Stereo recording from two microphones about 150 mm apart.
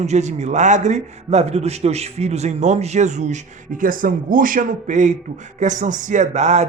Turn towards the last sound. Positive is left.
turn(degrees=-50)  # may be behind; listen again after turning